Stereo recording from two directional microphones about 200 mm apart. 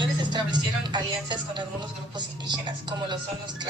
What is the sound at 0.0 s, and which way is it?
A woman's voice, 20° right (ahead or behind).